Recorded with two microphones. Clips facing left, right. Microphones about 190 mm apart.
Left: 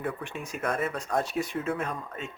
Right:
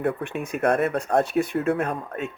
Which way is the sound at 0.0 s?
60° right (ahead or behind).